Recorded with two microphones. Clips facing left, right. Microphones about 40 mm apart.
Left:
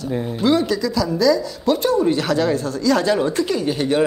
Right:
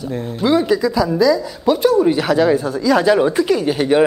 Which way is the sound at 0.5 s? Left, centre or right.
Centre.